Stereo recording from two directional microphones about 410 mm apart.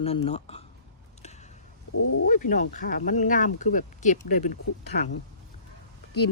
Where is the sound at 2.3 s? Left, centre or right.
Centre.